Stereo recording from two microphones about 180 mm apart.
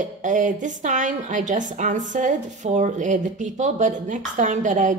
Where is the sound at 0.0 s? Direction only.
45° right (ahead or behind).